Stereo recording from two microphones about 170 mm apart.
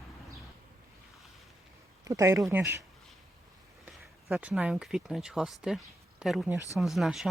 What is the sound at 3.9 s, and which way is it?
Speech, 10° right (ahead or behind).